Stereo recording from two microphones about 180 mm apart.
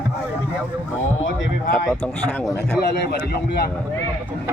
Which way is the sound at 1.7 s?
5° left (ahead or behind).